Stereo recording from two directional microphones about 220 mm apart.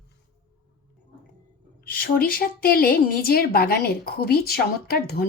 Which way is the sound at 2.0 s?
40° left (ahead or behind).